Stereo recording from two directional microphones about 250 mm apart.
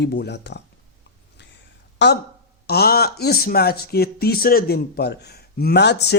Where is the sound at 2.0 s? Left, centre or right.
Left.